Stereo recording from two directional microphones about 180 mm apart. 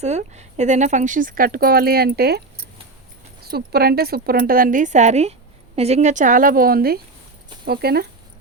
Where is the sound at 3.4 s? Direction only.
60° right (ahead or behind).